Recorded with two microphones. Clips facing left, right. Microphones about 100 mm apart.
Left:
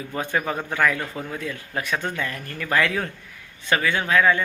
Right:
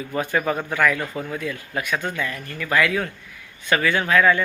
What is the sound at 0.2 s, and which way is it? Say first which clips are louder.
Speech: right 3 dB; 25° left (ahead or behind).